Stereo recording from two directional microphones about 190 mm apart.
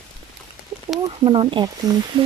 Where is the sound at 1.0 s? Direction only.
25° right (ahead or behind).